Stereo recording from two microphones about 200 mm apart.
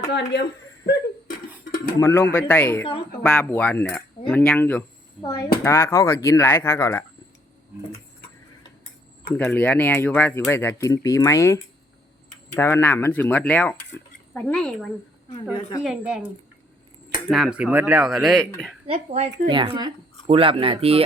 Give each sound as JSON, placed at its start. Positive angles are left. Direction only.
{"t": 0.1, "sound": "speech", "side_deg": 55}
{"t": 0.9, "sound": "a sound", "side_deg": 45}
{"t": 2.0, "sound": "speech", "side_deg": 15}
{"t": 5.2, "sound": "speech", "side_deg": 20}
{"t": 9.3, "sound": "speech", "side_deg": 10}
{"t": 17.2, "sound": "speech", "side_deg": 0}
{"t": 18.9, "sound": "speech", "side_deg": -35}